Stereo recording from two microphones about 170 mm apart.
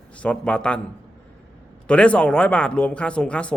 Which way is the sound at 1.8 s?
5° left (ahead or behind).